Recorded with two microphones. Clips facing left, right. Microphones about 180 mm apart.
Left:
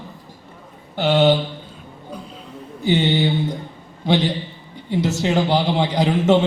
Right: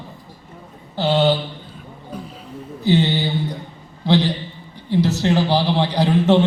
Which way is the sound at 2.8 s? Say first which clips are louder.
Even; 20° left (ahead or behind).